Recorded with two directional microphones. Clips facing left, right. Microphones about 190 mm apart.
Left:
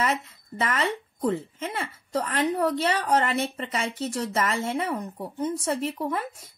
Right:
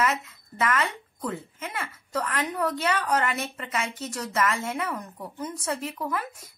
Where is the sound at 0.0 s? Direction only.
30° left (ahead or behind).